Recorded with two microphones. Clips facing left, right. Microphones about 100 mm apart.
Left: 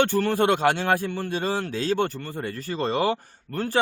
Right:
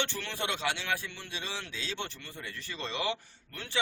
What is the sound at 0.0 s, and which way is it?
A man's voice, 45° left (ahead or behind).